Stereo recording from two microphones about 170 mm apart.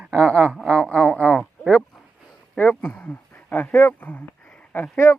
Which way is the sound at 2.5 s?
10° left (ahead or behind).